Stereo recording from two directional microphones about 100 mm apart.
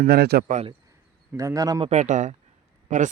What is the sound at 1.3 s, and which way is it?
Speech, 35° right (ahead or behind).